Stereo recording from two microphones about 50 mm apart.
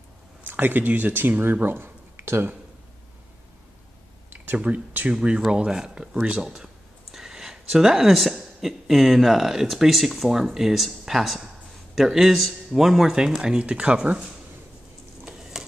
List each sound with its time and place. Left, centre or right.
0.5 s speech: right
4.6 s a man's voice: right; by 13.7 s centre
13.7 s speech: right
15.2 s a sound: centre